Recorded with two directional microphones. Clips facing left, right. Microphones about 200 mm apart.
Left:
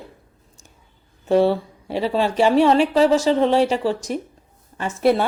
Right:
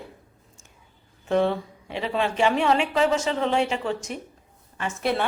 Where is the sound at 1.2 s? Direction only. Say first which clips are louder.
Left 6 dB; 35° left (ahead or behind).